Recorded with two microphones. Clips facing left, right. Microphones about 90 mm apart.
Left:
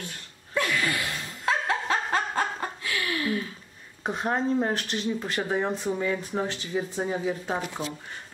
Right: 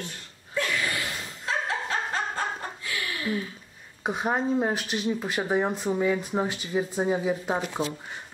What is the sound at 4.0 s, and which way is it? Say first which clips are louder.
Speech: right 1 dB; 5° right (ahead or behind).